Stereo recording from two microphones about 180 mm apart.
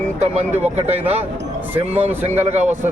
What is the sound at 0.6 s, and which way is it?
Speech, 10° right (ahead or behind).